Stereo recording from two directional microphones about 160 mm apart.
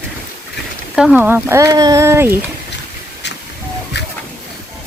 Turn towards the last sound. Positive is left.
turn(degrees=90)